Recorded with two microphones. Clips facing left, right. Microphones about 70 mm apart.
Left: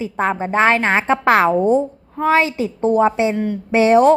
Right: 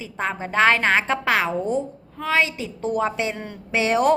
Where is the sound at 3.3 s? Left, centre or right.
Centre.